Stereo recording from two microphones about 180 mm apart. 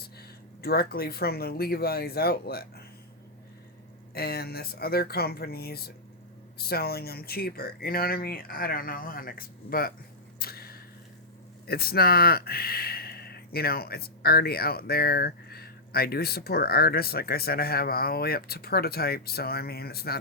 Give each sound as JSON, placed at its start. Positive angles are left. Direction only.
{"t": 0.6, "sound": "speech", "side_deg": 60}
{"t": 4.1, "sound": "speech", "side_deg": 60}
{"t": 10.4, "sound": "a sound", "side_deg": 55}
{"t": 11.6, "sound": "speech", "side_deg": 60}